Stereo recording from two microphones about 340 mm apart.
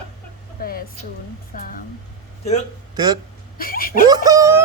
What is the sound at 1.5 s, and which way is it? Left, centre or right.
Speech, left.